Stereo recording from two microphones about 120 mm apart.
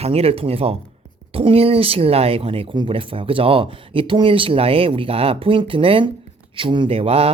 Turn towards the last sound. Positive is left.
turn(degrees=-55)  # may be behind; listen again after turning